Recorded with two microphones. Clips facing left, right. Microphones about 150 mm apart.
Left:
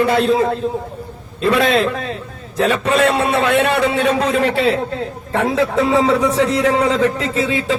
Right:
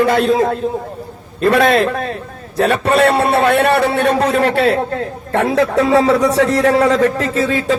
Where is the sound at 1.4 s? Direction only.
55° right (ahead or behind).